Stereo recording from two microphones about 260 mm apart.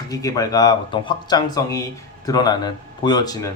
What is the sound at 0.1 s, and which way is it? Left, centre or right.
Speech, centre.